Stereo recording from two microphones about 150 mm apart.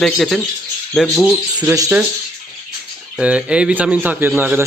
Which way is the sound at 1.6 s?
20° right (ahead or behind).